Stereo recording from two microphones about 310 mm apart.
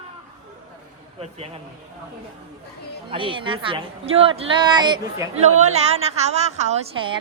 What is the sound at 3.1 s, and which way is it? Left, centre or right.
A woman's voice, centre.